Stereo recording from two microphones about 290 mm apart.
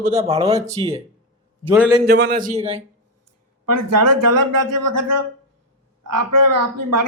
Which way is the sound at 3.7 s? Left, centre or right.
Right.